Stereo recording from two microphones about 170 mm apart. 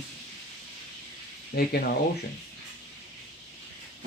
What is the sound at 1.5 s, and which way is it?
Speech, 65° left (ahead or behind).